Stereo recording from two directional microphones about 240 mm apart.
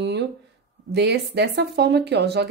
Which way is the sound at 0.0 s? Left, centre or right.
Right.